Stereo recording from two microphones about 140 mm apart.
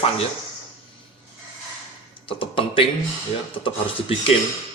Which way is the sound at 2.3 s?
40° left (ahead or behind).